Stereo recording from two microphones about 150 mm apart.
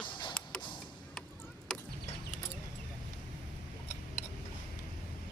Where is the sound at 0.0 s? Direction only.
30° left (ahead or behind).